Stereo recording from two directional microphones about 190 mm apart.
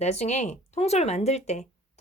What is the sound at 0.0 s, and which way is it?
Speech, 35° left (ahead or behind).